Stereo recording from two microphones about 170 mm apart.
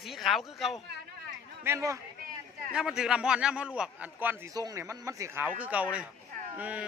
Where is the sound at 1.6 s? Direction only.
15° right (ahead or behind).